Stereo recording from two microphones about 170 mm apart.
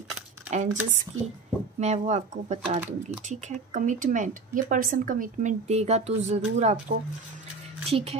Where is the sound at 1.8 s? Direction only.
40° right (ahead or behind).